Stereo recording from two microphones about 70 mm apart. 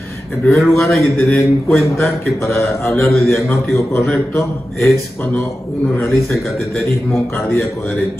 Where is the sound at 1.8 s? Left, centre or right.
Left.